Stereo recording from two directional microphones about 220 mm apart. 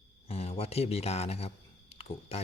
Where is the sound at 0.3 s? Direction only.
30° left (ahead or behind).